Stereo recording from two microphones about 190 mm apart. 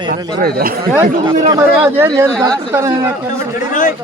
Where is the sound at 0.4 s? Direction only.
50° right (ahead or behind).